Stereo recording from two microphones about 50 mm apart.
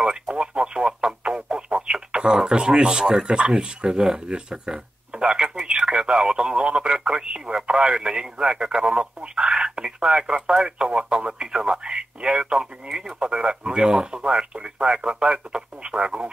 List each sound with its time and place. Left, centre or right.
0.0 s radio: centre